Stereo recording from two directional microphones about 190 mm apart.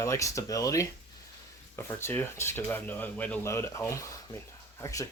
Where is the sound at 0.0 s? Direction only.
15° left (ahead or behind).